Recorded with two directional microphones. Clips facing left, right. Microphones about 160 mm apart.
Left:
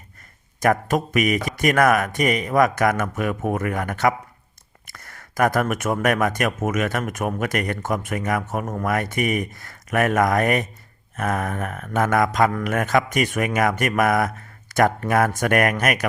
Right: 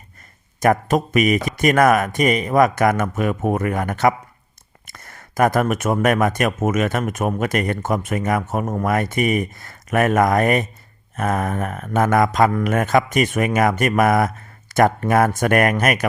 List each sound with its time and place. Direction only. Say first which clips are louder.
0.6 s speech: right 3 dB; 25° right (ahead or behind)